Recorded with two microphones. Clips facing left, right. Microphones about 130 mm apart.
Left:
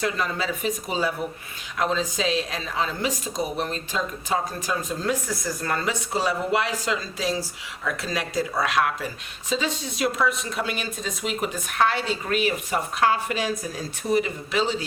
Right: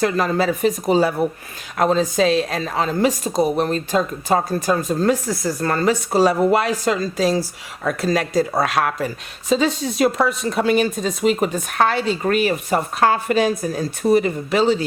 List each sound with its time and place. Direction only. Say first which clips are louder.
0.0 s a woman's voice: right 8 dB; 40° right (ahead or behind)